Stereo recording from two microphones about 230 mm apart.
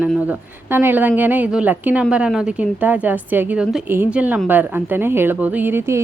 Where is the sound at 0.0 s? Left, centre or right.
Centre.